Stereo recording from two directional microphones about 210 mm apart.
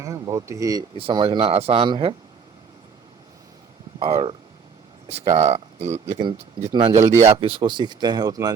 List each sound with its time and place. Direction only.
0.0 s speech: 15° right (ahead or behind)
4.0 s speech: 25° right (ahead or behind)
5.8 s speech: 10° right (ahead or behind)
7.2 s speech: 30° right (ahead or behind)